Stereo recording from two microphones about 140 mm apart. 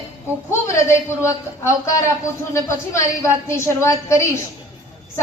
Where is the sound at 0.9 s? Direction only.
20° left (ahead or behind).